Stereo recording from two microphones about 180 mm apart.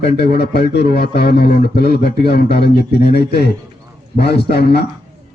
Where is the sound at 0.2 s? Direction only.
65° left (ahead or behind).